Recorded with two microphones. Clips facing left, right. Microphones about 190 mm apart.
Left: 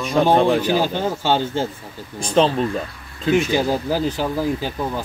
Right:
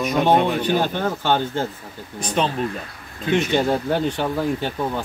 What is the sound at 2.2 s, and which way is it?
Speech, 30° left (ahead or behind).